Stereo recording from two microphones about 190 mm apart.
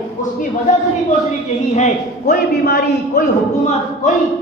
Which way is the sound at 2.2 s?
55° left (ahead or behind).